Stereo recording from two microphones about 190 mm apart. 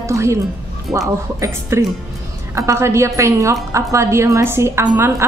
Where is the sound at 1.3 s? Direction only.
15° right (ahead or behind).